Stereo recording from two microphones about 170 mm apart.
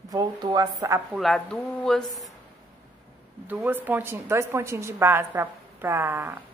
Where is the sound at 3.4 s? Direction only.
10° right (ahead or behind).